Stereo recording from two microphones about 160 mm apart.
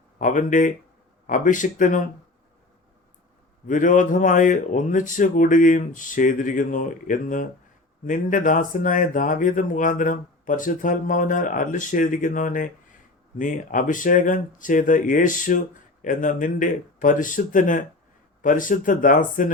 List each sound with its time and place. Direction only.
0.2 s speech: 55° left (ahead or behind)
3.7 s speech: 55° left (ahead or behind)